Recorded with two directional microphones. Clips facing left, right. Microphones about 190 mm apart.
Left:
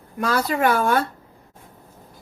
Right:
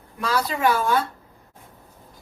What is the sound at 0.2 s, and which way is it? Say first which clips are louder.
Speech: left 2 dB; 50° left (ahead or behind).